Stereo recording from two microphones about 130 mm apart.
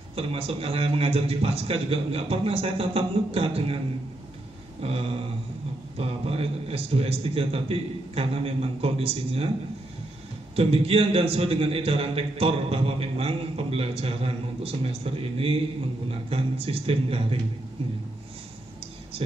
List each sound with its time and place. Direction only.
0.1 s a man's voice: 50° right (ahead or behind)
4.8 s a man's voice: 50° right (ahead or behind)
10.5 s a man's voice: 50° right (ahead or behind)